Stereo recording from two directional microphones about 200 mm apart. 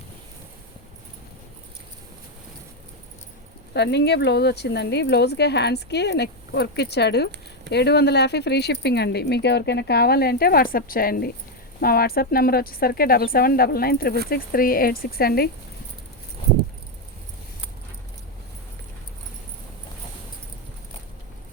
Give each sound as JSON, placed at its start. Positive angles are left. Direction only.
{"t": 3.8, "sound": "speech", "side_deg": 55}